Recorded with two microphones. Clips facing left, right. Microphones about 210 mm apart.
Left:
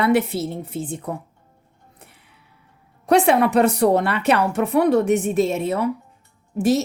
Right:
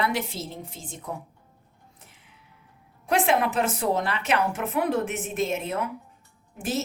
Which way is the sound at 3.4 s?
65° left (ahead or behind).